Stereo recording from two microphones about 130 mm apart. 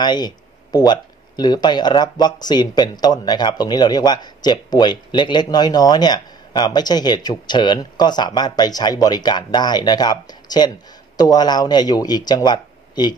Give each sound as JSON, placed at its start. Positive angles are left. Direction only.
{"t": 0.0, "sound": "speech", "side_deg": 35}